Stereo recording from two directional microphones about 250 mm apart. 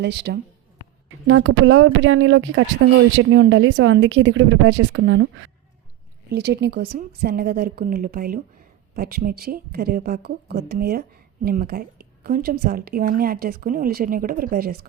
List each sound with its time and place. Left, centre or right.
0.0 s a woman's voice: right